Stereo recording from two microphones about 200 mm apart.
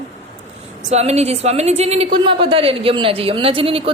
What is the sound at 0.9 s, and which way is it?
A woman's voice, 35° right (ahead or behind).